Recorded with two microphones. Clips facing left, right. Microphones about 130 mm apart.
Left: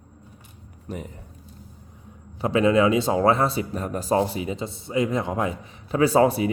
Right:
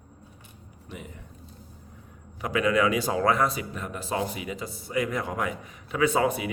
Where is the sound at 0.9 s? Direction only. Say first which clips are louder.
Left 7 dB; 40° left (ahead or behind).